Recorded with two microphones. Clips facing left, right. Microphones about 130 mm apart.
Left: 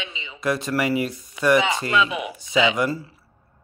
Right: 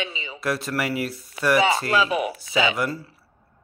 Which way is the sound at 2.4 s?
Centre (ahead or behind).